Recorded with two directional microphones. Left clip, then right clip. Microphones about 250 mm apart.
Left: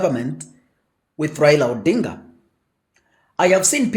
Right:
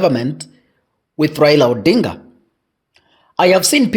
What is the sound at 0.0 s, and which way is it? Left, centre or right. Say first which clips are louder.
Speech: right 5 dB; right.